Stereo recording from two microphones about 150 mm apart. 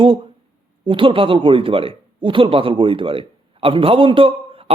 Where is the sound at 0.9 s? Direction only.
35° right (ahead or behind).